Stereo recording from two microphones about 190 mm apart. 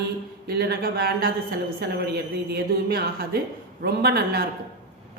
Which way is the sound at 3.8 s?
55° right (ahead or behind).